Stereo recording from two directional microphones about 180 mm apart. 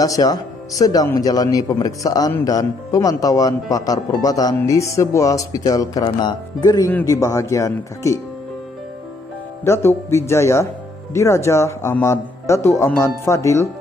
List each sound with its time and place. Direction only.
0.0 s speech: 20° left (ahead or behind)
9.7 s speech: 15° left (ahead or behind)